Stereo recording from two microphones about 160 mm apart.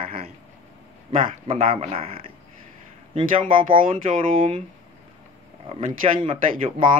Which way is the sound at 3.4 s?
60° right (ahead or behind).